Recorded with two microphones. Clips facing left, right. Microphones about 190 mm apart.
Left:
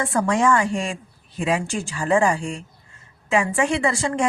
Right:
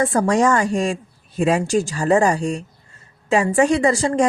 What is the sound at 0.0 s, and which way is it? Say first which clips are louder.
A woman's voice: right 3 dB; 40° right (ahead or behind).